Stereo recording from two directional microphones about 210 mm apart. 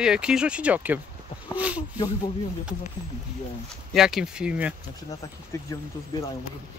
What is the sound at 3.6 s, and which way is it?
Speech, centre (ahead or behind).